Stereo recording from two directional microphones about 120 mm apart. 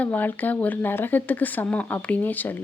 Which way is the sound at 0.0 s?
15° left (ahead or behind).